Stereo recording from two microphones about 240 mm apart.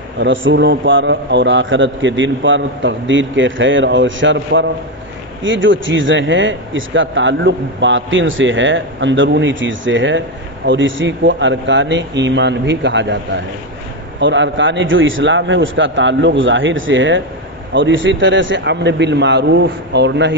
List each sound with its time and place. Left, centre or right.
0.2 s speech: right
14.2 s speech: right